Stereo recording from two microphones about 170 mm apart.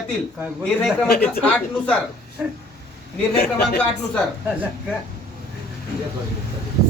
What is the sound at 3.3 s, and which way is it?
Speech, 70° left (ahead or behind).